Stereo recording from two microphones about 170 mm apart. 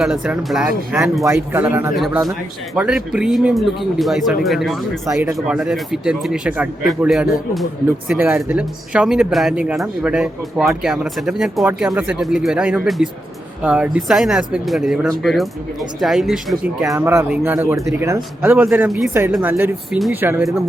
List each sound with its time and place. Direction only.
0.0 s speech: 5° right (ahead or behind)
1.2 s speech: 15° right (ahead or behind)
2.0 s speech: centre (ahead or behind)
5.1 s speech: 20° right (ahead or behind)
5.5 s speech: 5° right (ahead or behind)